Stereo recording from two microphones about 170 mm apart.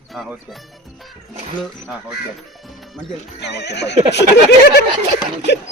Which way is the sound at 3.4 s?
90° left.